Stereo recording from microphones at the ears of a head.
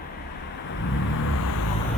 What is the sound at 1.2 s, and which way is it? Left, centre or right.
Vehicle, left.